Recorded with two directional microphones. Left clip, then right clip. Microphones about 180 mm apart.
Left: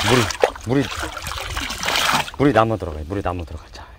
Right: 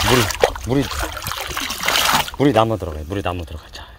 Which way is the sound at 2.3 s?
Centre (ahead or behind).